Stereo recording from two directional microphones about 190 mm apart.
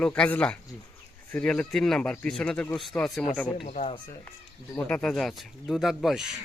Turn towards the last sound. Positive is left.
turn(degrees=0)  # may be behind; listen again after turning